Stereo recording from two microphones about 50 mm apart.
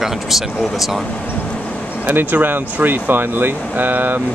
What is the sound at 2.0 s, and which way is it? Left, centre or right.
Speech, right.